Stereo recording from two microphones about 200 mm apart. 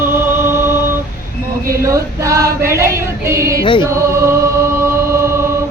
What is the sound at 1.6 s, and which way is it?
Female singing, 15° right (ahead or behind).